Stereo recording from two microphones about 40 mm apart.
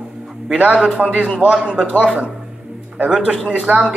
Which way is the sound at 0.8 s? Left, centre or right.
Right.